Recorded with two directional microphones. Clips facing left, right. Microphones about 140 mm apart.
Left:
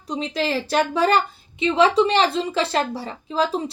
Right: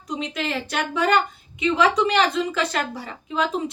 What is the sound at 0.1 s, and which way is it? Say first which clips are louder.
A woman's voice: left 3 dB; 30° left (ahead or behind).